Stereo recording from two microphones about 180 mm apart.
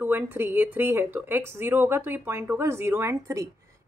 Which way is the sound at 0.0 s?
10° right (ahead or behind).